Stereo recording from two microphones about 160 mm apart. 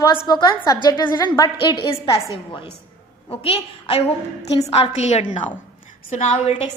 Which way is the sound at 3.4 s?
35° left (ahead or behind).